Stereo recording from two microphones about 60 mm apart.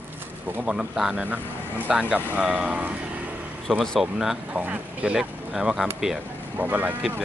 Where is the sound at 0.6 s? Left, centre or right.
Centre.